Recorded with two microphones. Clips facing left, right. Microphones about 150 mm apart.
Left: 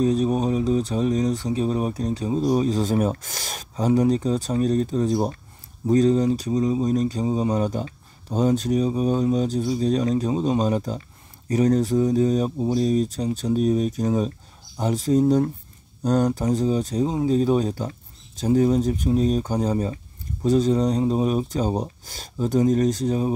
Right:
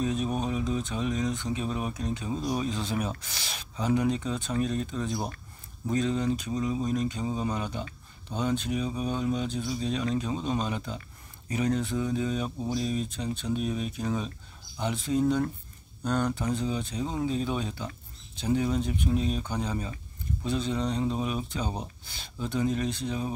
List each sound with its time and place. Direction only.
0.0 s speech: 35° left (ahead or behind)